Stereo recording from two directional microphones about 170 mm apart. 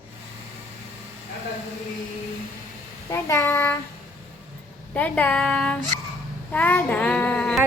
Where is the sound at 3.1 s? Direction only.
15° left (ahead or behind).